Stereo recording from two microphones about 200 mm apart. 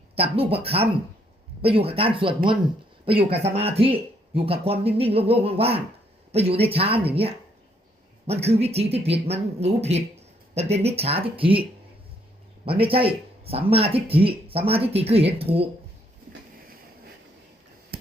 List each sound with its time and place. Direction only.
0.2 s speech: 30° right (ahead or behind)
12.6 s speech: 25° right (ahead or behind)
17.9 s a sound: 50° right (ahead or behind)